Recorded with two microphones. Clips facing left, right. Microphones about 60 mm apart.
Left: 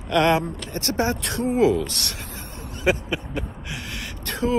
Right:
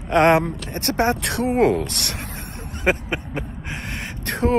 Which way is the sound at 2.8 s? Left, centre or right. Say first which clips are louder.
Right 1 dB; right.